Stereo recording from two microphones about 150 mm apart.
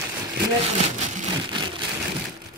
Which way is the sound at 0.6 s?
50° right (ahead or behind).